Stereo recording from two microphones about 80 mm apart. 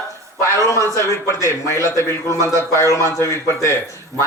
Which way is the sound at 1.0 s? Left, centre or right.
Left.